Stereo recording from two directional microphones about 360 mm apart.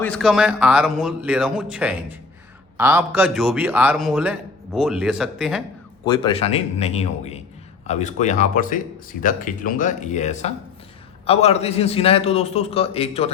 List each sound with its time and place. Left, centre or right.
0.0 s a man's voice: centre
6.1 s a man's voice: centre